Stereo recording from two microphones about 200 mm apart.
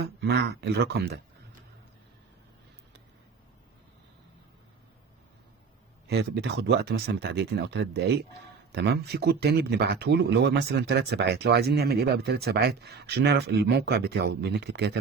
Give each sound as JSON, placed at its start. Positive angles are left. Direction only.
{"t": 0.0, "sound": "speech", "side_deg": -55}
{"t": 6.1, "sound": "speech", "side_deg": -55}